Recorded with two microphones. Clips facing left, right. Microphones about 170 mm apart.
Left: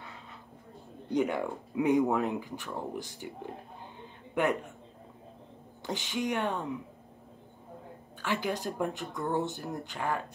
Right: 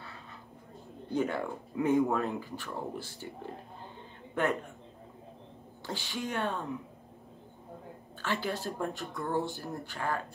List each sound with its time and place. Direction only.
1.1 s speech: 15° left (ahead or behind)
5.9 s speech: 20° left (ahead or behind)
8.2 s speech: 15° left (ahead or behind)